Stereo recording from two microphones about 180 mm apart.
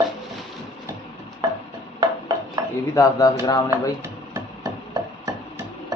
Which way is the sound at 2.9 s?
20° left (ahead or behind).